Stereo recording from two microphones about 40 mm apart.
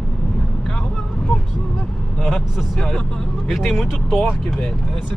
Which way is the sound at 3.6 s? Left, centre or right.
Centre.